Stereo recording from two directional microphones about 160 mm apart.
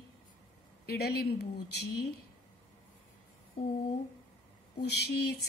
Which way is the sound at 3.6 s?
40° left (ahead or behind).